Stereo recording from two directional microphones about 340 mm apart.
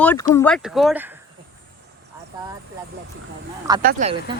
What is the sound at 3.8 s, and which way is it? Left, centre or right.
Speech, right.